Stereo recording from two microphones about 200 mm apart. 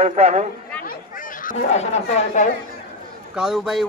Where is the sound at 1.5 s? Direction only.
35° left (ahead or behind).